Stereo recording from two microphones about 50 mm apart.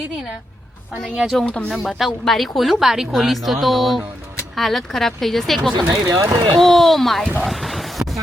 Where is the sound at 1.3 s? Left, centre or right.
Centre.